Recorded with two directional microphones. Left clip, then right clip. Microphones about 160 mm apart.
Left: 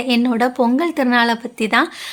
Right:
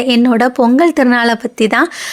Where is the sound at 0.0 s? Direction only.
40° right (ahead or behind).